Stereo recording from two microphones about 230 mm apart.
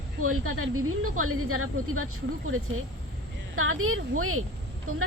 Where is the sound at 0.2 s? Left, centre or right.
Right.